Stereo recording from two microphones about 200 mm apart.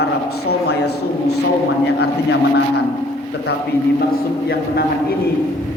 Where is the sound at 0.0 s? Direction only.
55° left (ahead or behind).